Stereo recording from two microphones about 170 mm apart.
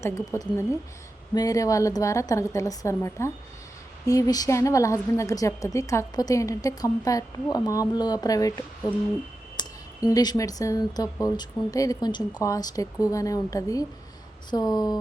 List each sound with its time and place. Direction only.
0.0 s a woman's voice: 20° left (ahead or behind)